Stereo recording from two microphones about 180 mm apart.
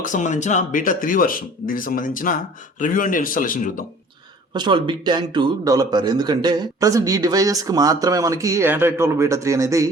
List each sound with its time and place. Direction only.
0.0 s speech: 45° left (ahead or behind)
4.5 s a man's voice: 25° right (ahead or behind)